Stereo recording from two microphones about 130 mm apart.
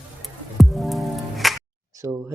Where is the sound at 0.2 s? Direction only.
Centre (ahead or behind).